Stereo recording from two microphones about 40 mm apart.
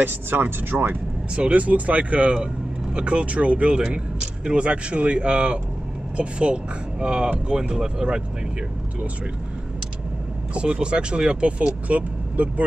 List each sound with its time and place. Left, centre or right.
0.0 s speech: right
1.3 s speech: right
2.3 s speech: right
10.5 s speech: right